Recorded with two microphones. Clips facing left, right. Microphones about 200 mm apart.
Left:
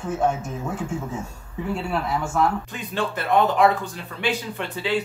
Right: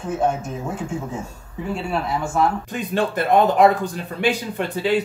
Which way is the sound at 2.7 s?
45° right (ahead or behind).